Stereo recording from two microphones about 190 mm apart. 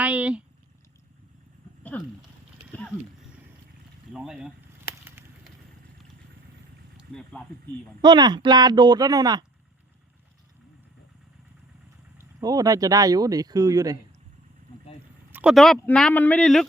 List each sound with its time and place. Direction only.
0.0 s a sound: 5° right (ahead or behind)
1.8 s a sound: 10° left (ahead or behind)
4.1 s speech: 5° right (ahead or behind)
6.9 s speech: 5° left (ahead or behind)
8.0 s speech: 20° right (ahead or behind)
12.1 s speech: 20° right (ahead or behind)
15.3 s speech: 5° right (ahead or behind)